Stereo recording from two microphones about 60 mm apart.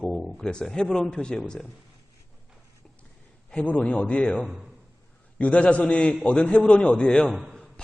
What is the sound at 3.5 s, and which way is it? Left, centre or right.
A man's voice, centre.